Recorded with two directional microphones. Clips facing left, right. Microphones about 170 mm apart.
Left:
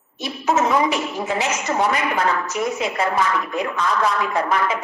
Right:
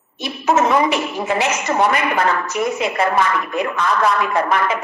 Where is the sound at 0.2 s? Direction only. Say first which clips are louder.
Right 3 dB; 65° right (ahead or behind).